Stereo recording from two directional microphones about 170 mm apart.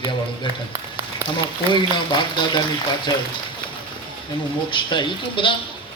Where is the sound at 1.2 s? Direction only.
15° right (ahead or behind).